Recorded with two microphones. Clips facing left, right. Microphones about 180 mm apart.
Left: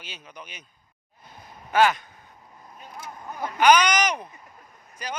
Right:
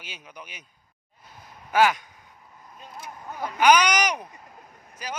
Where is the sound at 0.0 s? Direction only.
10° right (ahead or behind).